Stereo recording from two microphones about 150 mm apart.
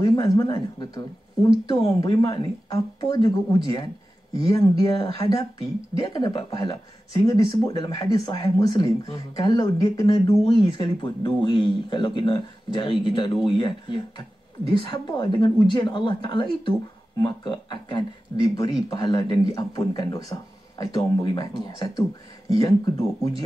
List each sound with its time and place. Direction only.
0.0 s speech: 30° left (ahead or behind)
3.7 s a sound: 30° left (ahead or behind)
4.5 s speech: 25° left (ahead or behind)